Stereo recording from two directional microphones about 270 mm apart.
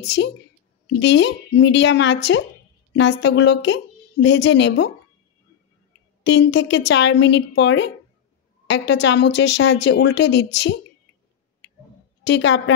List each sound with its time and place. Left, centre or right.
0.0 s speech: left
6.2 s speech: left
12.2 s speech: left